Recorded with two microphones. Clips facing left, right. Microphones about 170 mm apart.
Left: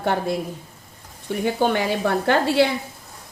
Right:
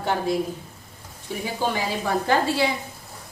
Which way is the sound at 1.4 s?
60° left (ahead or behind).